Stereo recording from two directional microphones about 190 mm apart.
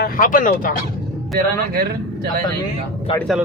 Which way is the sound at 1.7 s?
55° right (ahead or behind).